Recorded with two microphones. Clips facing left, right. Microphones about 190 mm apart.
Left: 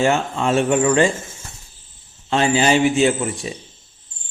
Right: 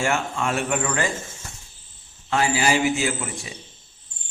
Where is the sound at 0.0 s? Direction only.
25° left (ahead or behind).